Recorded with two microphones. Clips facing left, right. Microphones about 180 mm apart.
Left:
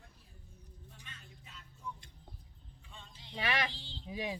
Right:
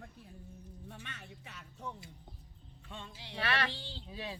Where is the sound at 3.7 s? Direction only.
70° right (ahead or behind).